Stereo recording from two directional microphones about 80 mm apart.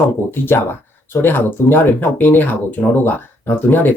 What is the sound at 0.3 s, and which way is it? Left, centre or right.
Speech, left.